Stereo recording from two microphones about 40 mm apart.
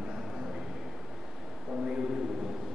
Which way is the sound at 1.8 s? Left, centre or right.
Centre.